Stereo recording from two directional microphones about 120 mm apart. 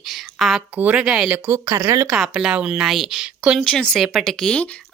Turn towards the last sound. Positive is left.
turn(degrees=5)  # may be behind; listen again after turning